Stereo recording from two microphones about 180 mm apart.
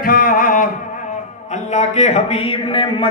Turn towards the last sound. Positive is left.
turn(degrees=30)  # may be behind; listen again after turning